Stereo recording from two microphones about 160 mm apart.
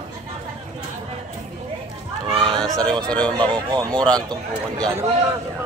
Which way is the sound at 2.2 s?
30° right (ahead or behind).